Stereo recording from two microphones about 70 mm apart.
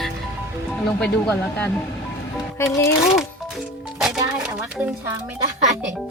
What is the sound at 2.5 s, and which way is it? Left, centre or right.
Speech, left.